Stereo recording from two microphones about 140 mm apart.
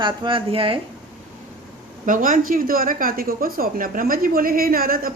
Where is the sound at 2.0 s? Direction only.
70° right (ahead or behind).